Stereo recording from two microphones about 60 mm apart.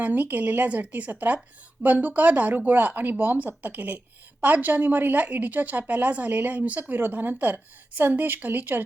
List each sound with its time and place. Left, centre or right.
0.0 s speech: right